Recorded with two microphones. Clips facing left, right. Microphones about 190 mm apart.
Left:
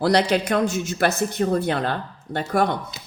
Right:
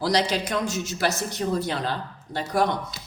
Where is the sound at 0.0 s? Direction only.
60° left (ahead or behind).